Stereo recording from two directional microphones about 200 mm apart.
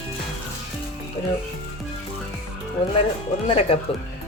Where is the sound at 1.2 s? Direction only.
30° left (ahead or behind).